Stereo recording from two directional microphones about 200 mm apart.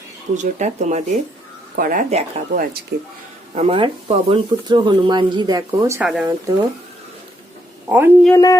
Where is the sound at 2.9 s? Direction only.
55° right (ahead or behind).